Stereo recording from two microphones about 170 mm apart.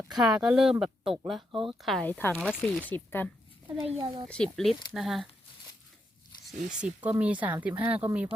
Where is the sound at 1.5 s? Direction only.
30° right (ahead or behind).